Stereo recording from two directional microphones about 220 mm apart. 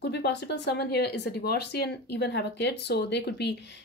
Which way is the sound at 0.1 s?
50° left (ahead or behind).